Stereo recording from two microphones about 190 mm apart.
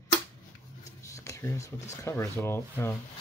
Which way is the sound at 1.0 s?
15° left (ahead or behind).